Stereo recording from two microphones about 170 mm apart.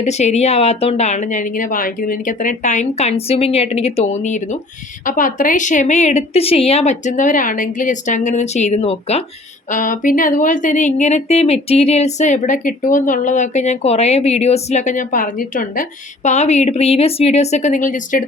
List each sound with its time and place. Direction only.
0.0 s a woman's voice: 40° left (ahead or behind)
9.6 s speech: 50° left (ahead or behind)